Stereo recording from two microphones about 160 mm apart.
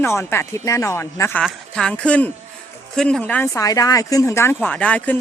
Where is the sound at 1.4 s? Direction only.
5° left (ahead or behind).